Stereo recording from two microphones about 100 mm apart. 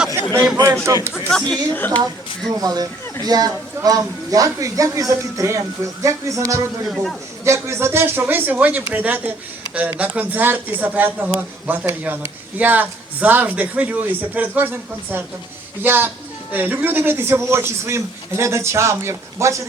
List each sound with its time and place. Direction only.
0.9 s speech: 35° right (ahead or behind)
1.3 s a woman's voice: 10° left (ahead or behind)
2.6 s speech: 40° right (ahead or behind)
6.8 s a man's voice: centre (ahead or behind)
7.4 s a man's voice: 30° right (ahead or behind)